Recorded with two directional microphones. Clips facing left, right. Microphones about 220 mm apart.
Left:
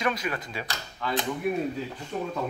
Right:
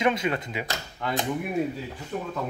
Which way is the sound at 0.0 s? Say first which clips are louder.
Right 4 dB; 25° right (ahead or behind).